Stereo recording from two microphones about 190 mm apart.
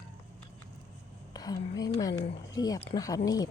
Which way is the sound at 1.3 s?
20° left (ahead or behind).